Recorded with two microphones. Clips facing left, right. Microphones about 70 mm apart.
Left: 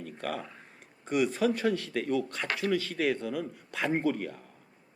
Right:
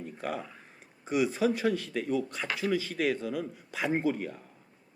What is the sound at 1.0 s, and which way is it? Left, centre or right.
A man's voice, centre.